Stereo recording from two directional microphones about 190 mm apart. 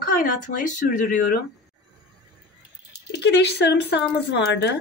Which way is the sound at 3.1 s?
65° left (ahead or behind).